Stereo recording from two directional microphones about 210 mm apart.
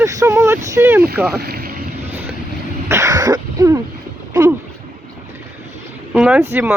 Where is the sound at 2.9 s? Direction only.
15° right (ahead or behind).